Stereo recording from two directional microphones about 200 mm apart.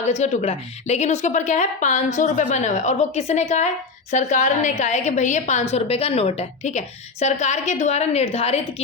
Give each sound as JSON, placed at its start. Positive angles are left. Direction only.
{"t": 0.0, "sound": "a woman's voice", "side_deg": 35}